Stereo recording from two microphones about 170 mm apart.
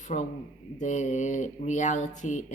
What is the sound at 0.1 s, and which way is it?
A man's voice, 40° left (ahead or behind).